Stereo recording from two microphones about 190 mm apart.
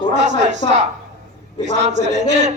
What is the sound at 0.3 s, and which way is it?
Speech, 40° right (ahead or behind).